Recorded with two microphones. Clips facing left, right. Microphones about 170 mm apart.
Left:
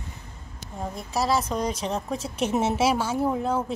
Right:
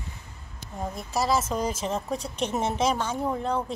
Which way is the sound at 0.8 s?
Centre (ahead or behind).